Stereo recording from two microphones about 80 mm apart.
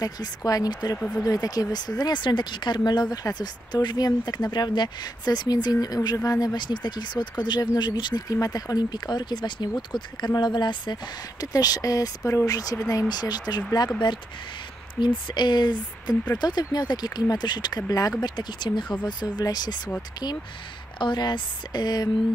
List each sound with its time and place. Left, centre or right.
0.0 s speech: left
0.9 s speech: centre
1.2 s speech: left
6.5 s speech: left
8.3 s speech: left
11.4 s speech: left
13.1 s speech: left
15.0 s speech: left
18.2 s speech: left
21.0 s speech: left